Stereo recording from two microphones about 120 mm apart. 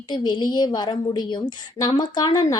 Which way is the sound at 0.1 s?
35° left (ahead or behind).